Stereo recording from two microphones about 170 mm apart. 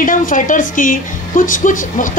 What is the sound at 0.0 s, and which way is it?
A woman's voice, 50° left (ahead or behind).